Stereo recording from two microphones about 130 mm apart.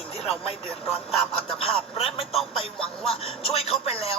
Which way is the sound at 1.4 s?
50° left (ahead or behind).